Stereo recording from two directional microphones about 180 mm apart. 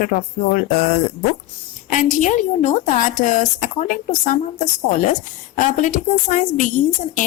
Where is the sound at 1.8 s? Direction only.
45° left (ahead or behind).